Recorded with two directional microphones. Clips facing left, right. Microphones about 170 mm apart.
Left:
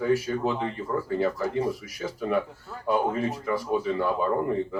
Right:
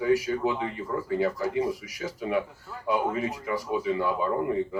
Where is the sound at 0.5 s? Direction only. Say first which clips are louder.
Left 2 dB; 30° left (ahead or behind).